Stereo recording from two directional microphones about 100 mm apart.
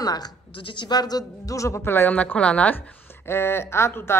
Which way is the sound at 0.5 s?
55° left (ahead or behind).